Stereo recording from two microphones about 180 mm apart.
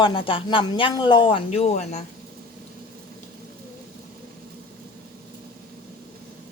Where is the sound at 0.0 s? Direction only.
25° left (ahead or behind).